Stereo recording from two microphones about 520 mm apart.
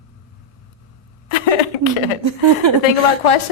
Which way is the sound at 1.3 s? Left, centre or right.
Left.